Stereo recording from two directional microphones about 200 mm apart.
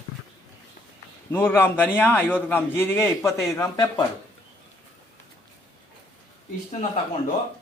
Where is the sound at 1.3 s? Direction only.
10° left (ahead or behind).